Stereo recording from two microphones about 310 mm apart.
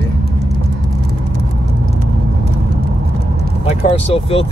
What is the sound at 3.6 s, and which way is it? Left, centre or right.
Speech, centre.